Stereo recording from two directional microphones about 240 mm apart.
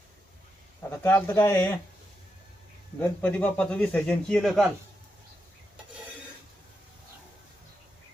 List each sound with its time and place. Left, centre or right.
0.8 s speech: centre
3.0 s a man's voice: centre